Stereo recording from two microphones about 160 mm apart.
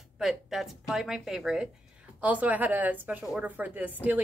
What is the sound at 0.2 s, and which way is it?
A woman's voice, centre (ahead or behind).